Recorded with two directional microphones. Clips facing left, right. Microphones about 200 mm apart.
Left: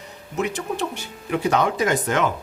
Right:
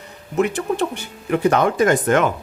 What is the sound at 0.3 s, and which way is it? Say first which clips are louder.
Speech: right 6 dB; 55° right (ahead or behind).